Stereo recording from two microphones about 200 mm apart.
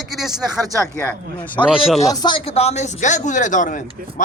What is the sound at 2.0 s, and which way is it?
Speech, 20° left (ahead or behind).